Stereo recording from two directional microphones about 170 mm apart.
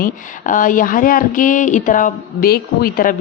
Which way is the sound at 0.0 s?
50° left (ahead or behind).